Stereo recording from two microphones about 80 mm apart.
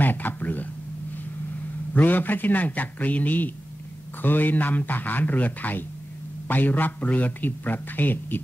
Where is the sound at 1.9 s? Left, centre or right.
Left.